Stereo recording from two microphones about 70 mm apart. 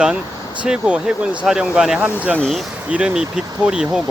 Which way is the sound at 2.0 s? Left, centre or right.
Right.